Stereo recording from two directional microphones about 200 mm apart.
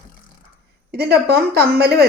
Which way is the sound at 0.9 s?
50° right (ahead or behind).